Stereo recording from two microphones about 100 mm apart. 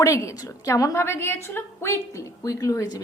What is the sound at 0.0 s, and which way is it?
A woman's voice, 30° left (ahead or behind).